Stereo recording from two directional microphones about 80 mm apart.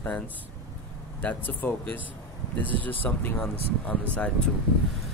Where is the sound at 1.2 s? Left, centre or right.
Left.